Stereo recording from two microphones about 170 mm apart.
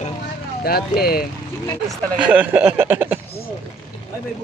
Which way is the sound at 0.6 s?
65° left (ahead or behind).